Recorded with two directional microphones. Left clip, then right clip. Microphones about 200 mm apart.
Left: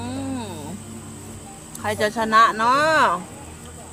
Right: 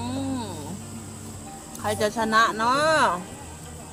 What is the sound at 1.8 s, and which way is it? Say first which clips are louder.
Speech: left 2 dB; 10° left (ahead or behind).